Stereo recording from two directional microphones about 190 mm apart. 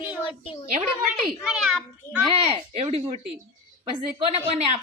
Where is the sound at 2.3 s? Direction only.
30° right (ahead or behind).